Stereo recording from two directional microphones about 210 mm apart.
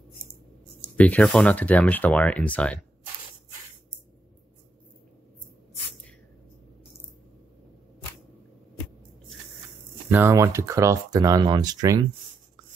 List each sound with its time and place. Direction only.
0.7 s speech: 5° left (ahead or behind)
10.1 s speech: 10° right (ahead or behind)